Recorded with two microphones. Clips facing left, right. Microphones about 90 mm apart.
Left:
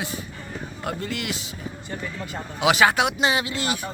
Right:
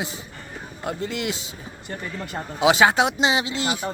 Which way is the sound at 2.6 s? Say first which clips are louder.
Right 2 dB; 25° right (ahead or behind).